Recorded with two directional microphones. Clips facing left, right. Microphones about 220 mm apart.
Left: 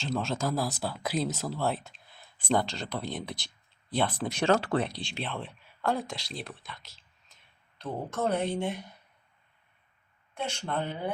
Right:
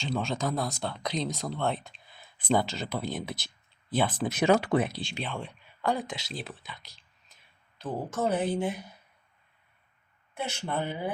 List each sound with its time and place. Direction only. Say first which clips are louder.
0.0 s speech: even; centre (ahead or behind)
4.4 s speech: right 2 dB; 15° right (ahead or behind)
4.9 s speech: right 1 dB; centre (ahead or behind)
10.3 s speech: even; 5° right (ahead or behind)